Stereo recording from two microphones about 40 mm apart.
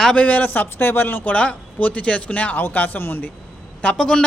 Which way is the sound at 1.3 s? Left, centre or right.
Left.